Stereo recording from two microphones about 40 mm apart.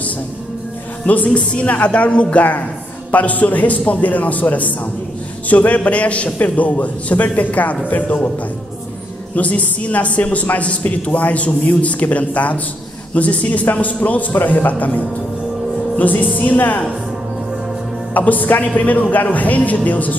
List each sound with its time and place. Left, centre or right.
1.0 s a man's voice: left
9.3 s a man's voice: left
16.0 s speech: left
18.1 s speech: left